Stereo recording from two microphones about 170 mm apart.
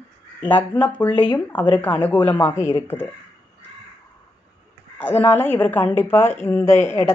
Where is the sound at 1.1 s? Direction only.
30° left (ahead or behind).